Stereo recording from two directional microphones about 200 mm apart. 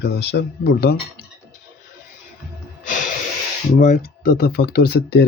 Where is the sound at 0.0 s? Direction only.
55° left (ahead or behind).